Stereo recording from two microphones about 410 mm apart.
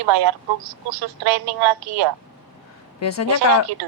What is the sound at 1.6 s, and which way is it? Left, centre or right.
Speech, right.